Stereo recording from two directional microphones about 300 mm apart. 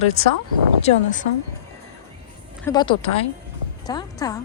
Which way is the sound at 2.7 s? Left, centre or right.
Centre.